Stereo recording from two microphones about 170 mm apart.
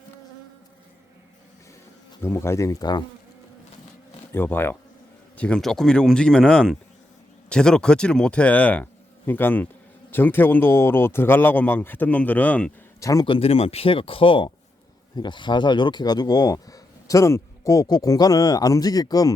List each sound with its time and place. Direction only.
2.2 s speech: 15° left (ahead or behind)
4.3 s speech: 15° left (ahead or behind)
13.0 s speech: 20° left (ahead or behind)
13.2 s speech: 35° left (ahead or behind)